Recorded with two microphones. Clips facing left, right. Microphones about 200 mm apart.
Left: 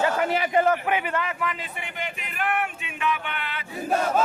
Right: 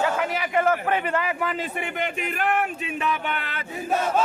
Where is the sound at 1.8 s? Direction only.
50° right (ahead or behind).